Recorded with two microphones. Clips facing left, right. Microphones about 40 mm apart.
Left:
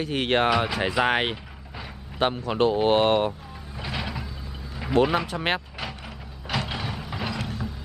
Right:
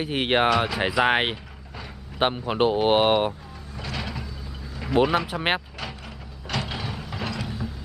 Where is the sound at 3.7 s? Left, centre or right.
Centre.